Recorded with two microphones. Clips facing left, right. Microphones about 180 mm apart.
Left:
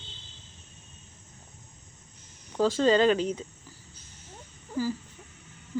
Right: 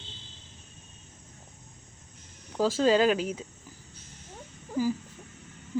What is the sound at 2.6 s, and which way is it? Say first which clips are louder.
Speech: left 1 dB; 5° right (ahead or behind).